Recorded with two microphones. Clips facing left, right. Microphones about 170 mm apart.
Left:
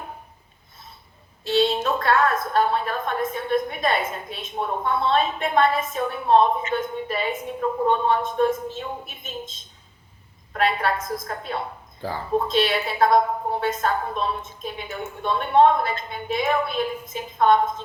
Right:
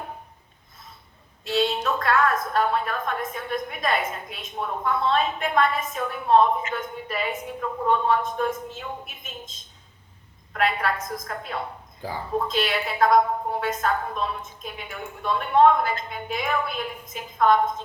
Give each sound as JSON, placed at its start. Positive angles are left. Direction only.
{"t": 1.5, "sound": "a woman's voice", "side_deg": 30}